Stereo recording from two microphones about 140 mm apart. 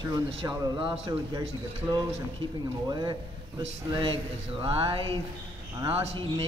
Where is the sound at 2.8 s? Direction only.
30° right (ahead or behind).